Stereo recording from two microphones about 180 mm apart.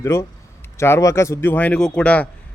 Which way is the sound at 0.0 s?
15° left (ahead or behind).